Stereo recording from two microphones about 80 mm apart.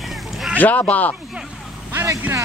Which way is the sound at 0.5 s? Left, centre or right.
Left.